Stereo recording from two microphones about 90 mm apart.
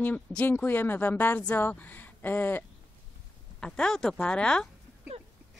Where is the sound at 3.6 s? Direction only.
5° left (ahead or behind).